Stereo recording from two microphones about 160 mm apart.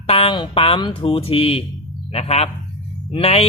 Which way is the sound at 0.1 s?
35° left (ahead or behind).